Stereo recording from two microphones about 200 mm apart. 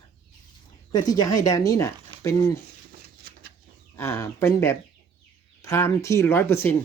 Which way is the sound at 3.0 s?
50° right (ahead or behind).